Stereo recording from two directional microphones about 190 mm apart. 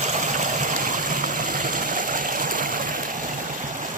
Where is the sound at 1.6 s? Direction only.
45° right (ahead or behind).